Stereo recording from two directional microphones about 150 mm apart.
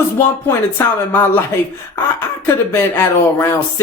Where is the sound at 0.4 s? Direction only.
15° left (ahead or behind).